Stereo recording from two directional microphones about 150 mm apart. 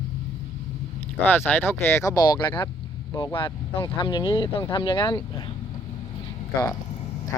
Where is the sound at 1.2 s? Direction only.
10° left (ahead or behind); by 5.4 s 30° left (ahead or behind).